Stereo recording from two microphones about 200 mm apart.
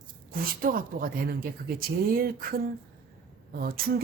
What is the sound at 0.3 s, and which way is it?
A woman's voice, 45° right (ahead or behind).